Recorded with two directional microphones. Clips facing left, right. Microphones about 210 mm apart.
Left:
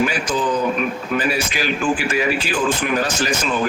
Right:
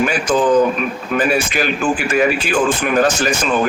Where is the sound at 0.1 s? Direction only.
50° right (ahead or behind).